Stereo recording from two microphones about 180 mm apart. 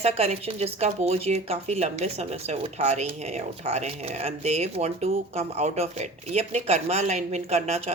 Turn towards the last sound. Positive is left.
turn(degrees=-35)  # may be behind; listen again after turning